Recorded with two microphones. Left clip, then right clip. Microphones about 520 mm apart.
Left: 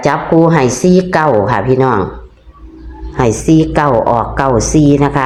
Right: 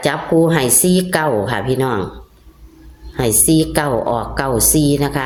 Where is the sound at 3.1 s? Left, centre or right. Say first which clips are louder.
Left 5 dB; right.